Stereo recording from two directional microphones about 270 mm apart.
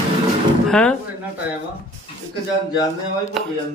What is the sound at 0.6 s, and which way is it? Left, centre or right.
Speech, centre.